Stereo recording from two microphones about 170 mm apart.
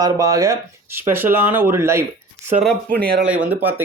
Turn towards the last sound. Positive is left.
turn(degrees=-10)  # may be behind; listen again after turning